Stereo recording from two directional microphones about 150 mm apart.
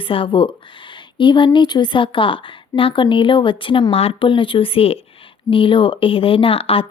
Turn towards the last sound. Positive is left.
turn(degrees=40)  # may be behind; listen again after turning